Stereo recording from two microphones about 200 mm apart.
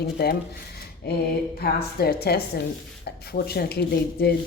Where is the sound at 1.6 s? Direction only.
50° left (ahead or behind).